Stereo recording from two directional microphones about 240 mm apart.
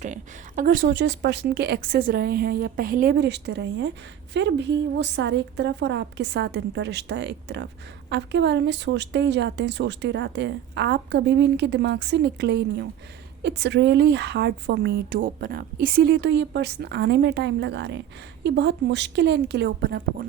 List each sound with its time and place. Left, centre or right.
0.0 s speech: right